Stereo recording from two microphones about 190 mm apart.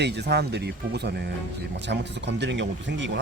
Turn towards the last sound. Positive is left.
turn(degrees=-65)  # may be behind; listen again after turning